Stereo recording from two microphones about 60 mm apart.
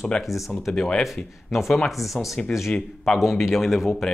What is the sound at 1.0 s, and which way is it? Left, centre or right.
Speech, centre.